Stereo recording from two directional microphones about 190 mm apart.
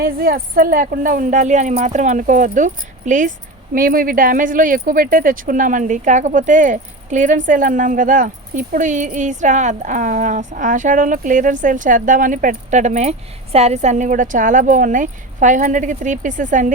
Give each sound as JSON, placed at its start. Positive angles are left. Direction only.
{"t": 0.0, "sound": "speech", "side_deg": -50}